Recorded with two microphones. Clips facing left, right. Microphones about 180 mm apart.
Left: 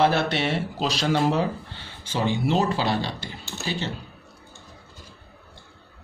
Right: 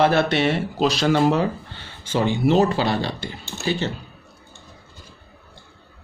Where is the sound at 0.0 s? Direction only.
60° right (ahead or behind).